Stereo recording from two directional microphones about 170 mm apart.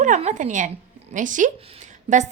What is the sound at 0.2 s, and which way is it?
A woman's voice, 45° right (ahead or behind).